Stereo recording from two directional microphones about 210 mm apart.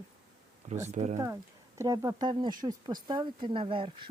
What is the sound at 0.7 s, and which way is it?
Speech, 35° right (ahead or behind).